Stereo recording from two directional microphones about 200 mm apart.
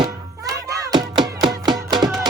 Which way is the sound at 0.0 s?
15° right (ahead or behind).